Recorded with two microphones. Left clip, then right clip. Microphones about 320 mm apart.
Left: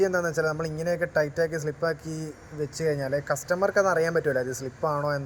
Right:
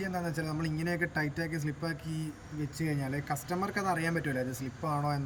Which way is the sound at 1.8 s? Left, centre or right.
Centre.